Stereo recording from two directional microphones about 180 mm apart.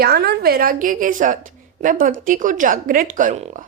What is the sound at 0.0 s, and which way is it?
A woman's voice, 60° right (ahead or behind).